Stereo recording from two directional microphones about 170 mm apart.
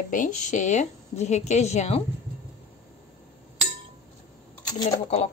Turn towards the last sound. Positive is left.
turn(degrees=40)  # may be behind; listen again after turning